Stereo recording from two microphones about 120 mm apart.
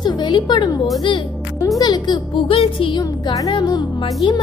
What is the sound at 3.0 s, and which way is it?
A child's voice, 30° left (ahead or behind).